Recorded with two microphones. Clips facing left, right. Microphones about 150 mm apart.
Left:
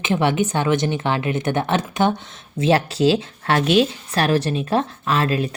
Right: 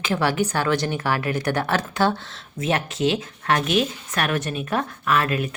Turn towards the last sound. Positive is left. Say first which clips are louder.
# left 2 dB
turn(degrees=30)  # may be behind; listen again after turning